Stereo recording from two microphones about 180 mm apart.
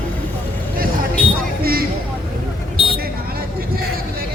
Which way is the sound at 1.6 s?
55° right (ahead or behind).